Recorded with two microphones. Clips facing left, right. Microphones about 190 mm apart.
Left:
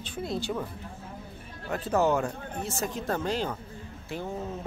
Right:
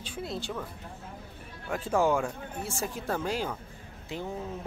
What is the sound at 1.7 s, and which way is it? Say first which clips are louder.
Speech: left 1 dB; 10° right (ahead or behind).